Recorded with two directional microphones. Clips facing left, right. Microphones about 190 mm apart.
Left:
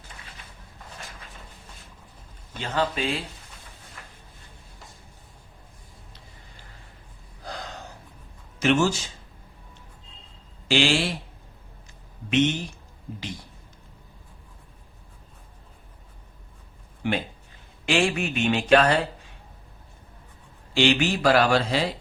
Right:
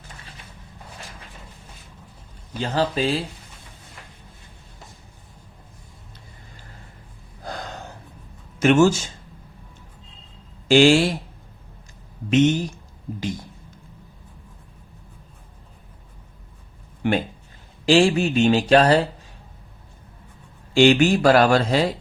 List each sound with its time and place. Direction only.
2.6 s speech: 35° right (ahead or behind)
8.5 s speech: 50° right (ahead or behind)
10.7 s speech: 45° right (ahead or behind)
12.3 s speech: 40° right (ahead or behind)
17.0 s a sound: 55° right (ahead or behind)
17.8 s speech: 35° right (ahead or behind)
20.7 s speech: 45° right (ahead or behind)